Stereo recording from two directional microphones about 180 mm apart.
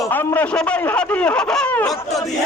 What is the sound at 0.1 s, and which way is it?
A man's voice, 10° left (ahead or behind).